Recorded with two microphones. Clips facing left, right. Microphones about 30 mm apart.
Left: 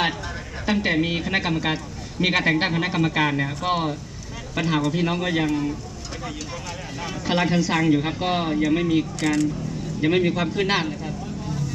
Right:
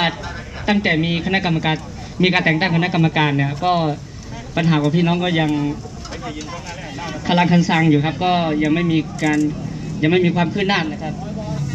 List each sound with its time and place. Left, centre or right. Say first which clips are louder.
0.7 s a man's voice: right 4 dB; right
7.1 s speech: right 6 dB; centre